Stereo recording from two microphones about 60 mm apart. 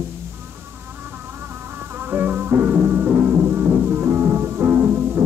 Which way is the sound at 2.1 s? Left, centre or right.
Right.